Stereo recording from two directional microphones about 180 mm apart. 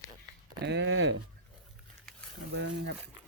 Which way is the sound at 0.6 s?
75° right (ahead or behind).